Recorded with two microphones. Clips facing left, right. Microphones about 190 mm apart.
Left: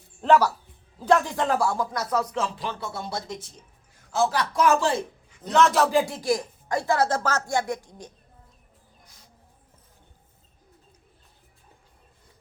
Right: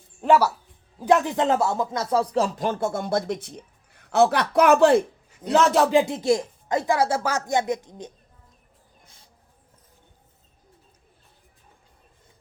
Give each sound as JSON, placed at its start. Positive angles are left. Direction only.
{"t": 0.2, "sound": "speech", "side_deg": -10}
{"t": 5.5, "sound": "a man's voice", "side_deg": -35}
{"t": 5.9, "sound": "speech", "side_deg": -20}